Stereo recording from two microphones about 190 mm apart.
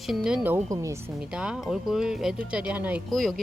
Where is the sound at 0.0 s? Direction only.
Centre (ahead or behind); by 1.1 s 15° right (ahead or behind).